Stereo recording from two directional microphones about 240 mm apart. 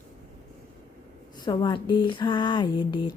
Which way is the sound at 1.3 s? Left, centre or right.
Centre.